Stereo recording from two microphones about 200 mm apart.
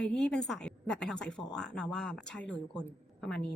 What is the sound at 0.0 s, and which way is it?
A woman's voice, 5° left (ahead or behind).